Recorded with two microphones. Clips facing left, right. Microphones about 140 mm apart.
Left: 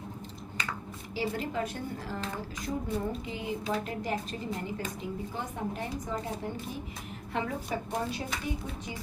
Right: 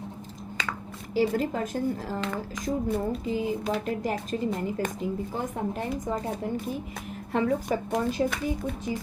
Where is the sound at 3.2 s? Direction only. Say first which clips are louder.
Right 7 dB; 40° right (ahead or behind).